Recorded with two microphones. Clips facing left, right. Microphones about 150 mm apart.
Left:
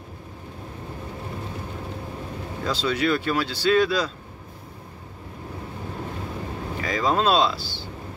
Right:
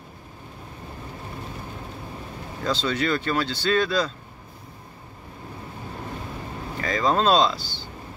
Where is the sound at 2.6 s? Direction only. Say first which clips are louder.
Left 1 dB; 10° left (ahead or behind).